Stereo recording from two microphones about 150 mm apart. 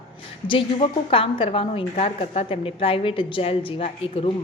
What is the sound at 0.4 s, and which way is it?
A woman's voice, 35° left (ahead or behind).